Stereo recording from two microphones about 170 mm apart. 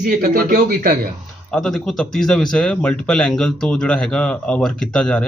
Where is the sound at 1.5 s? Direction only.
Centre (ahead or behind).